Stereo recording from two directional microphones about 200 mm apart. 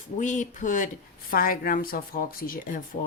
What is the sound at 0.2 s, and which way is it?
Speech, 40° left (ahead or behind).